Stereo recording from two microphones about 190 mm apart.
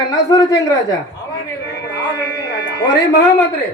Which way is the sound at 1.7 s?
65° left (ahead or behind).